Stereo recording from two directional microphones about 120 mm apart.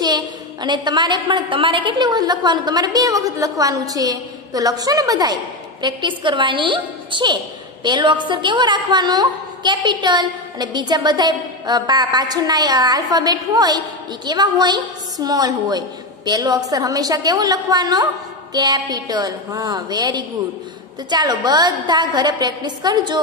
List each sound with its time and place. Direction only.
0.0 s a woman's voice: 35° right (ahead or behind)